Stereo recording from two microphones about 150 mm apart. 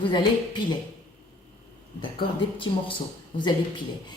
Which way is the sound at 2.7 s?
30° left (ahead or behind).